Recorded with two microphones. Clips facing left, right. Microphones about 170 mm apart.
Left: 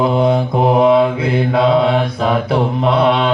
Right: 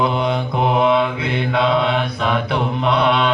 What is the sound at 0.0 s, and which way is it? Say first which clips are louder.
Mantra: left 5 dB; 35° left (ahead or behind).